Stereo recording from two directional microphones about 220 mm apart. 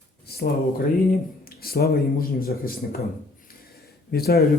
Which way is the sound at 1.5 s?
45° left (ahead or behind).